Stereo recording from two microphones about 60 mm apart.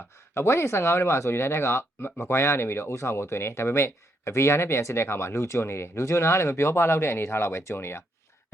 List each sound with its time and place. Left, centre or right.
0.3 s speech: left